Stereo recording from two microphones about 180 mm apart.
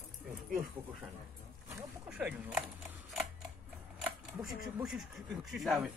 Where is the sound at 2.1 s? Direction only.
5° right (ahead or behind).